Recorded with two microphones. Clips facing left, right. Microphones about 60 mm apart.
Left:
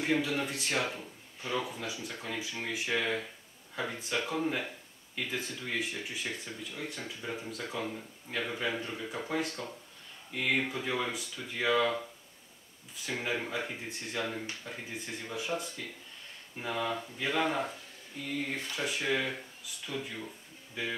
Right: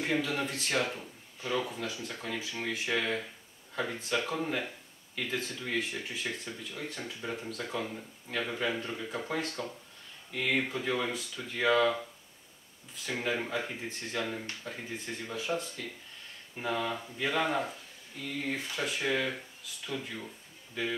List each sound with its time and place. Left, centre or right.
0.0 s speech: centre
13.2 s speech: centre